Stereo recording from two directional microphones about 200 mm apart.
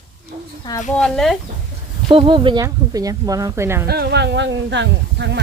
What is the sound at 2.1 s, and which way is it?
A woman's voice, 25° right (ahead or behind).